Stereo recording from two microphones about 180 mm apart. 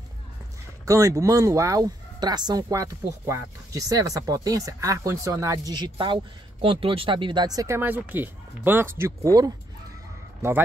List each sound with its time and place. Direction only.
0.8 s speech: 20° right (ahead or behind)